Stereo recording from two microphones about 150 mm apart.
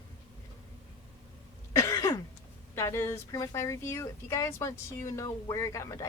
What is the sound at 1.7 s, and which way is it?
Cough, 20° left (ahead or behind).